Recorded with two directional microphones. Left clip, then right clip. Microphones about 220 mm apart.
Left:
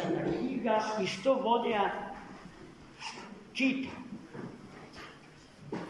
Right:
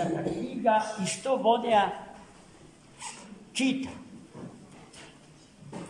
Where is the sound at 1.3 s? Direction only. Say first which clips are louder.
Right 5 dB; 45° right (ahead or behind).